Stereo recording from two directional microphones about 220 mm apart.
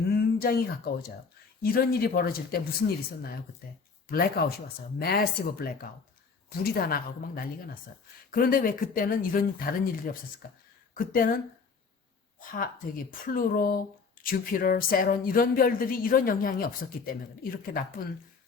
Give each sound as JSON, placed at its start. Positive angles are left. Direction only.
{"t": 0.1, "sound": "a sound", "side_deg": 45}
{"t": 1.6, "sound": "speech", "side_deg": 40}
{"t": 4.1, "sound": "speech", "side_deg": 45}
{"t": 12.4, "sound": "speech", "side_deg": 40}